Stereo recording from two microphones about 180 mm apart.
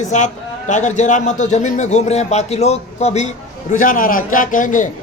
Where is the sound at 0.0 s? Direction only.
40° left (ahead or behind).